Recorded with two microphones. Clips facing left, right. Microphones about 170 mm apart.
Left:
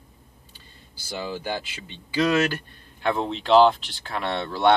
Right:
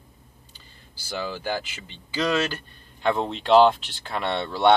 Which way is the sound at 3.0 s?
Centre (ahead or behind).